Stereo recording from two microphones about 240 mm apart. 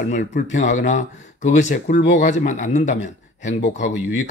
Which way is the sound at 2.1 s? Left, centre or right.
Left.